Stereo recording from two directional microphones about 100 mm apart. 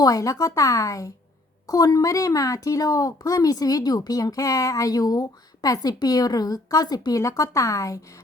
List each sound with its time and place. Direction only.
0.0 s speech: 35° left (ahead or behind)